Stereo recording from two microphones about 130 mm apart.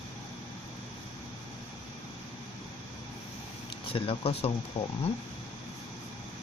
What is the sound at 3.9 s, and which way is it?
Speech, 45° left (ahead or behind).